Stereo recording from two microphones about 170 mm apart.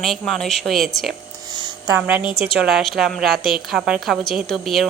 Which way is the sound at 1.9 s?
10° right (ahead or behind).